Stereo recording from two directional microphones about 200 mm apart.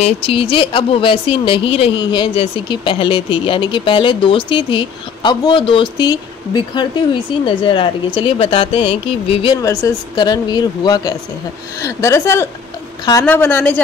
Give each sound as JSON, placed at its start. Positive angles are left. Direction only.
{"t": 0.0, "sound": "a woman's voice", "side_deg": 30}